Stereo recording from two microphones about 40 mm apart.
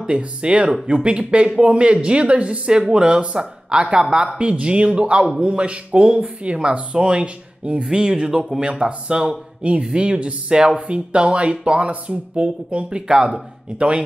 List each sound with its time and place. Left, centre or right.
0.0 s speech: right
7.8 s speech: centre